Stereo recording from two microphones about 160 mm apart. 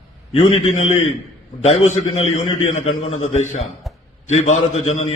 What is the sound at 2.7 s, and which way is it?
A man's voice, 45° left (ahead or behind).